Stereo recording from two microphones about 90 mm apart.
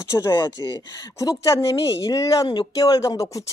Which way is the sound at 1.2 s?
35° left (ahead or behind).